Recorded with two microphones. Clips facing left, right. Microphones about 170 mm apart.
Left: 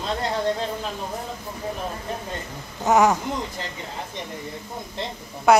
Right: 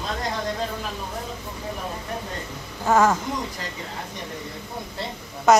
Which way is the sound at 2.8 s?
15° left (ahead or behind).